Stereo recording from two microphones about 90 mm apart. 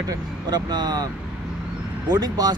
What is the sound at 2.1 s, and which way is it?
Speech, 45° right (ahead or behind).